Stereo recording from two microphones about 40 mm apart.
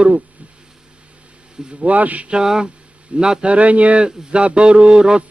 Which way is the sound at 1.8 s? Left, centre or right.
Right.